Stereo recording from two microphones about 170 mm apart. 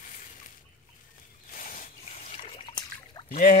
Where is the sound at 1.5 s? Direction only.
50° left (ahead or behind).